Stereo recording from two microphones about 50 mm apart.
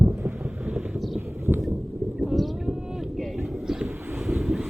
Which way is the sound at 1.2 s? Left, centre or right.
Right.